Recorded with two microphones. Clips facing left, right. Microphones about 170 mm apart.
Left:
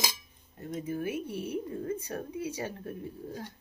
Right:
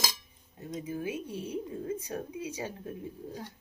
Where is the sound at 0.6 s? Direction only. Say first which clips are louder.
Left 2 dB; 15° right (ahead or behind).